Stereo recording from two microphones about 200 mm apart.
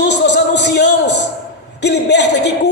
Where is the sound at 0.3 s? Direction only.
60° left (ahead or behind).